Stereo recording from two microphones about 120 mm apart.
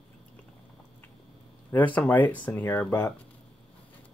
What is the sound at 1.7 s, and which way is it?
Speech, 15° left (ahead or behind).